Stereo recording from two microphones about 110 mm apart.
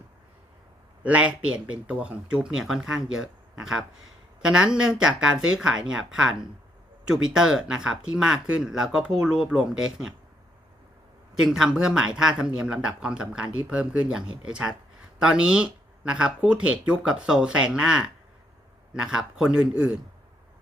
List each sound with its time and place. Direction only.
1.0 s speech: 10° right (ahead or behind)
11.4 s speech: 5° right (ahead or behind)